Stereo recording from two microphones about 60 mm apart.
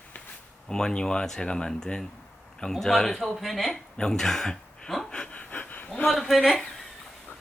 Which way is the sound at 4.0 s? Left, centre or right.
Centre.